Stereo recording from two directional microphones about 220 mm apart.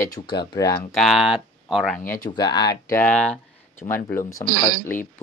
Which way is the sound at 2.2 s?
20° left (ahead or behind).